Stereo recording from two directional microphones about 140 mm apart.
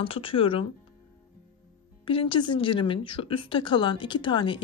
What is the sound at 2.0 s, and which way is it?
A woman's voice, 40° left (ahead or behind).